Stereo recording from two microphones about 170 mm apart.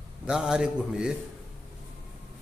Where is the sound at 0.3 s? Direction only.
5° right (ahead or behind).